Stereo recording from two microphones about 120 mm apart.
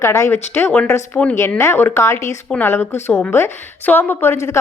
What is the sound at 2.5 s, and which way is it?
A woman's voice, 15° left (ahead or behind).